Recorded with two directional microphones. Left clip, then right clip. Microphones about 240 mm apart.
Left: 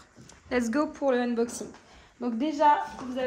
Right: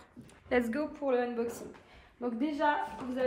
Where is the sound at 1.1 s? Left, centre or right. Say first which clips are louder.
Left 2 dB; left.